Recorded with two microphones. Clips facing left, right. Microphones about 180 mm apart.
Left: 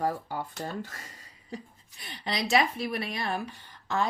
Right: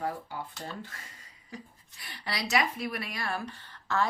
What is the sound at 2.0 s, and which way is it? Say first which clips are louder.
Speech: left 4 dB; 20° left (ahead or behind).